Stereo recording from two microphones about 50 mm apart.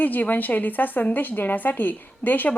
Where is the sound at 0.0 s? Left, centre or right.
Left.